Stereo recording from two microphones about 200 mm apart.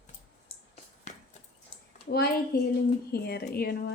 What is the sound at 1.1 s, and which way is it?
Horse, 35° left (ahead or behind).